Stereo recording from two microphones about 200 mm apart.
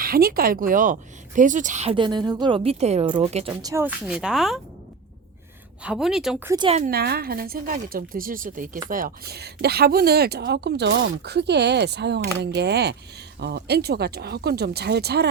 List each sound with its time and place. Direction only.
0.0 s a woman's voice: 45° right (ahead or behind); by 3.5 s 30° right (ahead or behind)
3.6 s speech: 15° right (ahead or behind)
4.0 s a woman's voice: 5° right (ahead or behind)
5.8 s a woman's voice: 5° right (ahead or behind)
6.5 s a woman's voice: 20° right (ahead or behind)
6.7 s a woman's voice: 45° right (ahead or behind)